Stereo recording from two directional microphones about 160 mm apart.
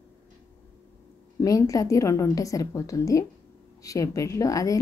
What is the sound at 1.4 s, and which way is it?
A woman's voice, 20° left (ahead or behind).